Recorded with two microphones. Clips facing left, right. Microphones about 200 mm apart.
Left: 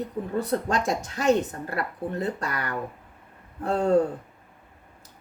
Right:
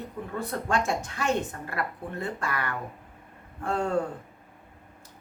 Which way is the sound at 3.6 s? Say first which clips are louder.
Left 6 dB; 35° left (ahead or behind).